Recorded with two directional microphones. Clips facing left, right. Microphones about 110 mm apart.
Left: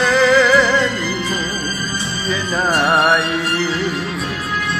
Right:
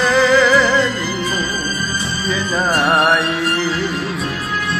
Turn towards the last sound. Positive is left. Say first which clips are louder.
# even
turn(degrees=0)  # may be behind; listen again after turning